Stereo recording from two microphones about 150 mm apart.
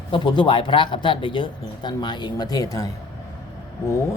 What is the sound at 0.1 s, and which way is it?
Speech, 30° left (ahead or behind).